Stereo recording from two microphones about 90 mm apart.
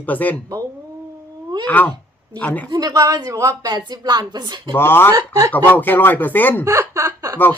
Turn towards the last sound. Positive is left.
turn(degrees=-35)  # may be behind; listen again after turning